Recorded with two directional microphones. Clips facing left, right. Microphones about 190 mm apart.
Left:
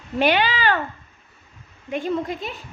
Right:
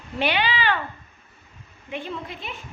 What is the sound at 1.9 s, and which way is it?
Speech, 45° left (ahead or behind).